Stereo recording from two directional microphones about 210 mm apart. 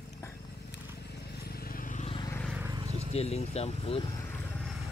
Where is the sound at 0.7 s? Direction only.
50° left (ahead or behind); by 2.2 s 35° left (ahead or behind).